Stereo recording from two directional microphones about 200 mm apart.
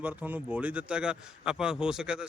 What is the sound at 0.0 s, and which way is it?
A man's voice, 5° right (ahead or behind).